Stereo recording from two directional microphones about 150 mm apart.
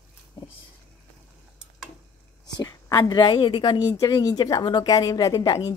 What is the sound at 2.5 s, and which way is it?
A woman's voice, 20° left (ahead or behind).